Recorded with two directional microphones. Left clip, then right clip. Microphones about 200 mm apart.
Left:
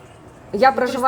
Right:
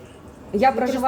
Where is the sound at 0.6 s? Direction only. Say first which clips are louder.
Left 3 dB; 30° left (ahead or behind).